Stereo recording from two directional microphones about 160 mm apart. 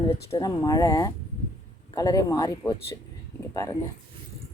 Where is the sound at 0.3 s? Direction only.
25° left (ahead or behind).